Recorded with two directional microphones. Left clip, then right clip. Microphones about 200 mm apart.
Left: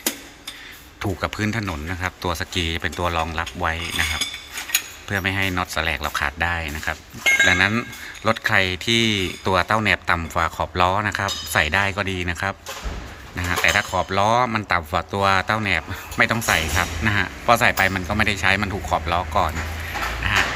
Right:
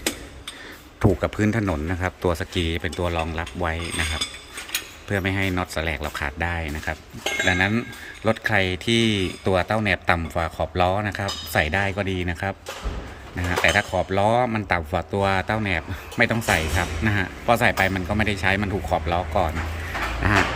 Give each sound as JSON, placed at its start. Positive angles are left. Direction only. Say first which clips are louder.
{"t": 1.2, "sound": "speech", "louder": "right 1 dB", "side_deg": -20}
{"t": 5.0, "sound": "speech", "louder": "even", "side_deg": -15}